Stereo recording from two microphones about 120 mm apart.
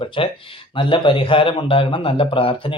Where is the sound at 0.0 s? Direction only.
45° left (ahead or behind).